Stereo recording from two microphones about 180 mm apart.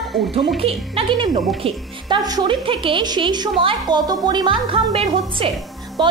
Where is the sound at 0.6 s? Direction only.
30° right (ahead or behind).